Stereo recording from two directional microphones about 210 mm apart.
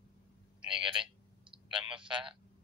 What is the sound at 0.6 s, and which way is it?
Speech, 5° right (ahead or behind).